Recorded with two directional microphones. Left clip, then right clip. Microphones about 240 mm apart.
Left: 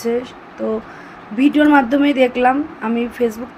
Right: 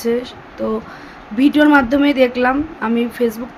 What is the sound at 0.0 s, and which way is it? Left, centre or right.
A woman's voice, centre.